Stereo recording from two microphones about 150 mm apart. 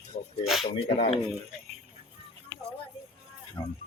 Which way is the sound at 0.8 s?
40° left (ahead or behind).